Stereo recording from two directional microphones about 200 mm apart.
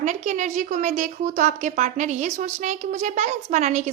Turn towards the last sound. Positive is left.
turn(degrees=-35)  # may be behind; listen again after turning